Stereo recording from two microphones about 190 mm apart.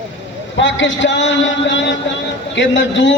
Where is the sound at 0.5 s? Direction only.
75° left (ahead or behind).